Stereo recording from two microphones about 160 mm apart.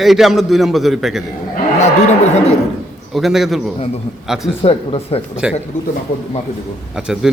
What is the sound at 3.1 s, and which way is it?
A man's voice, centre (ahead or behind).